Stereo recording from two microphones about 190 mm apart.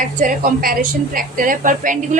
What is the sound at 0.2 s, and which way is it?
A woman's voice, 45° right (ahead or behind).